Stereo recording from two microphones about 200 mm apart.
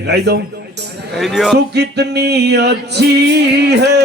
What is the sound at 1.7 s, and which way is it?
A man's voice, 55° right (ahead or behind).